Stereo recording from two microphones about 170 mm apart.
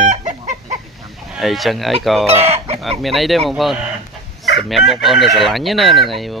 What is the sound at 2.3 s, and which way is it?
Chicken, 35° right (ahead or behind).